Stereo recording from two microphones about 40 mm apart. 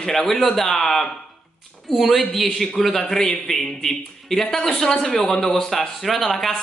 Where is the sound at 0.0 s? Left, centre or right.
Centre.